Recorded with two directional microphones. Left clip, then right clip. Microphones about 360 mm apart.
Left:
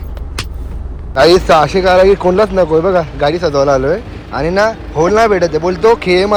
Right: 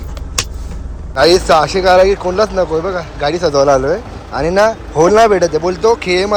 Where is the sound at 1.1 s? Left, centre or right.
Centre.